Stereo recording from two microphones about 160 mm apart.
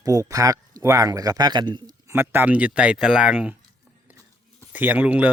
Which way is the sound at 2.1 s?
15° right (ahead or behind).